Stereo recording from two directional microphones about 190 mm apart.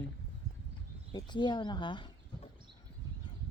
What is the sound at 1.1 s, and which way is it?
Speech, 25° left (ahead or behind).